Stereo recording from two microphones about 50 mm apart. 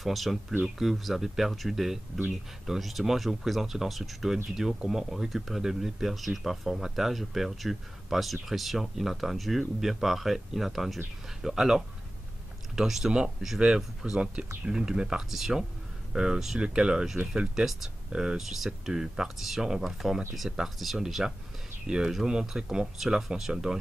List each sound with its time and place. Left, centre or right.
0.0 s speech: centre
16.5 s speech: centre